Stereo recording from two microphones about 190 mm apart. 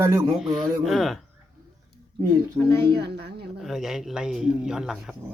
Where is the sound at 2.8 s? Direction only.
60° right (ahead or behind).